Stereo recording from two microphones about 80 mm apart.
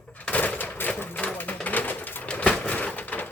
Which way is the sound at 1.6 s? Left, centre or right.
Left.